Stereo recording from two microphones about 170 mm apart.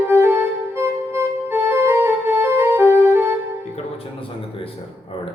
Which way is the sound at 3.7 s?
35° left (ahead or behind).